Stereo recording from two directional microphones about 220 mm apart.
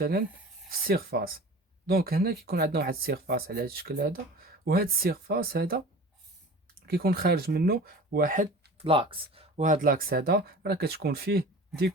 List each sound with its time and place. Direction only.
0.0 s speech: 45° right (ahead or behind)
6.8 s speech: 45° right (ahead or behind)
8.8 s speech: 25° right (ahead or behind); by 11.4 s 45° right (ahead or behind)